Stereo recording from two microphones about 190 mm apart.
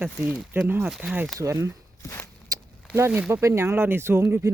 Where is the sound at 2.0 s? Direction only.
15° left (ahead or behind).